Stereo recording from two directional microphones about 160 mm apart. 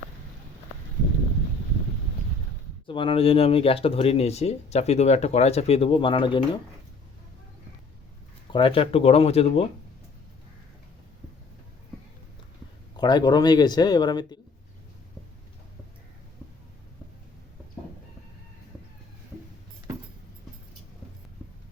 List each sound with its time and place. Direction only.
2.8 s speech: 30° left (ahead or behind)
8.5 s speech: 35° left (ahead or behind)
13.0 s speech: 25° left (ahead or behind)